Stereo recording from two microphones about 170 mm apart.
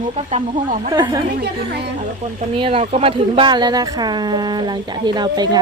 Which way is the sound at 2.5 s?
30° right (ahead or behind).